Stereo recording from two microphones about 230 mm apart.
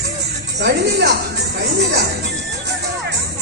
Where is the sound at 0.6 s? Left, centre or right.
Right.